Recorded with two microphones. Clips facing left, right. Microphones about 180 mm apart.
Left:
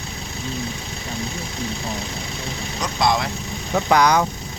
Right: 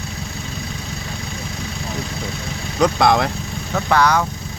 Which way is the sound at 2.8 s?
60° right (ahead or behind).